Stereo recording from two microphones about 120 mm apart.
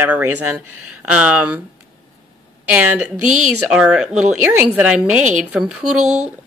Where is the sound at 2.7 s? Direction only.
20° right (ahead or behind).